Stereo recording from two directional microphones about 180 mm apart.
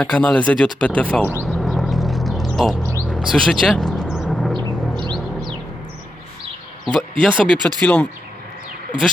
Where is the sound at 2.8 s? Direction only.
15° right (ahead or behind).